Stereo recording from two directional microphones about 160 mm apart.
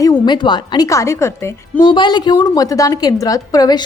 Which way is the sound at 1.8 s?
30° left (ahead or behind).